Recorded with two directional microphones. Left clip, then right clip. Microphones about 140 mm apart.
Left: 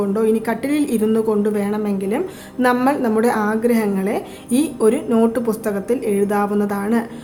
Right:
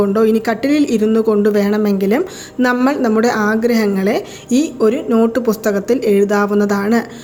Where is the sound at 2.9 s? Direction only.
25° right (ahead or behind).